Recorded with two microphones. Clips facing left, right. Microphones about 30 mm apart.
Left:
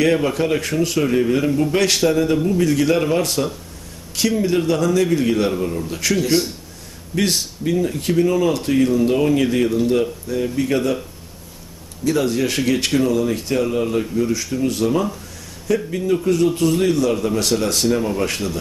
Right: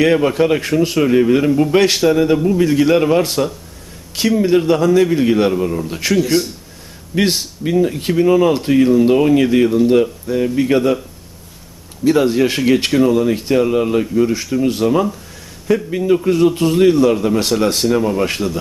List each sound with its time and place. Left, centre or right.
0.0 s speech: centre
4.4 s speech: centre
6.1 s speech: centre
7.2 s speech: centre
12.0 s speech: right